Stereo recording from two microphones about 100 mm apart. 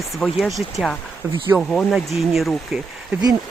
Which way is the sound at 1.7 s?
Centre (ahead or behind).